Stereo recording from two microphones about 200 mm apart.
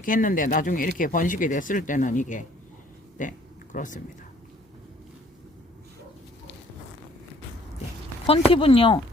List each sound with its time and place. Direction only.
0.0 s speech: 40° left (ahead or behind)
3.2 s a sound: 40° left (ahead or behind)
8.3 s speech: 30° left (ahead or behind)